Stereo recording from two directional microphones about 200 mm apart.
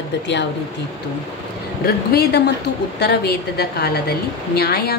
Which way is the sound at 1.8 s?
50° left (ahead or behind).